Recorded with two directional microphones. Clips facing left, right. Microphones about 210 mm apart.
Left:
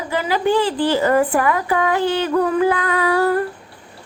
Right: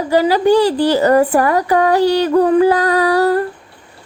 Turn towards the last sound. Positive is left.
turn(degrees=-35)  # may be behind; listen again after turning